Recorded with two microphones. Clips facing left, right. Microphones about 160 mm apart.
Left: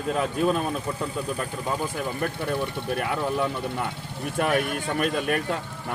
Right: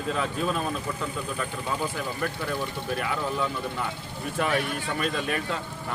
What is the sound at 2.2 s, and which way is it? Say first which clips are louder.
Speech: left 3 dB; 55° left (ahead or behind).